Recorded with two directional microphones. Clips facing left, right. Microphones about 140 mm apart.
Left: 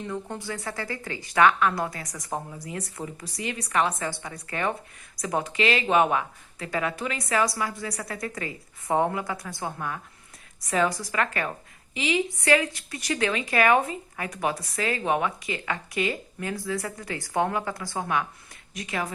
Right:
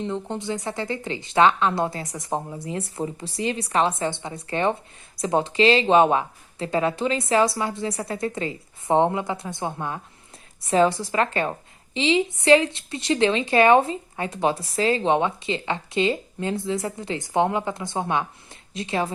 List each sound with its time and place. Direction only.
0.0 s speech: 25° right (ahead or behind)